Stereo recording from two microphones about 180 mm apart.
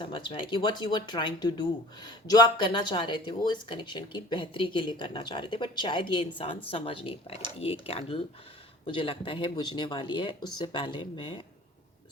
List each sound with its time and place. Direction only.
0.0 s speech: 25° left (ahead or behind)